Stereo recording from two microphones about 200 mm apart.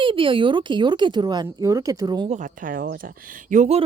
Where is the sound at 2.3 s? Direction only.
40° right (ahead or behind).